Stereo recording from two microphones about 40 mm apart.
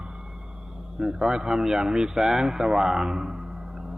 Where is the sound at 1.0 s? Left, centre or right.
Centre.